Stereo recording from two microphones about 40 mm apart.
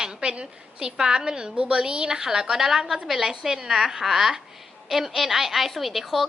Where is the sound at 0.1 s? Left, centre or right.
Right.